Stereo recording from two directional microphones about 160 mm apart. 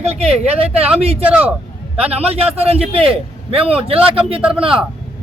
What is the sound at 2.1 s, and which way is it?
Speech, 40° right (ahead or behind).